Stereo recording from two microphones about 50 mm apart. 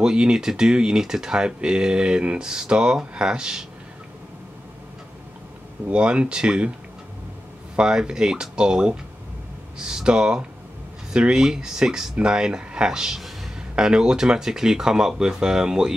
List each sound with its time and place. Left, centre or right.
0.0 s speech: centre
5.9 s speech: right
7.7 s speech: centre